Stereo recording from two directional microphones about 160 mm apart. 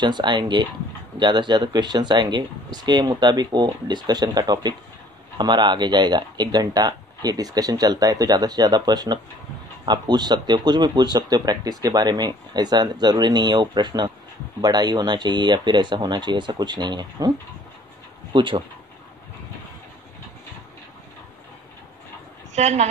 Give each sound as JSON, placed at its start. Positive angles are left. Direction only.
{"t": 0.0, "sound": "speech", "side_deg": -30}
{"t": 18.3, "sound": "speech", "side_deg": -30}
{"t": 22.5, "sound": "a woman's voice", "side_deg": -45}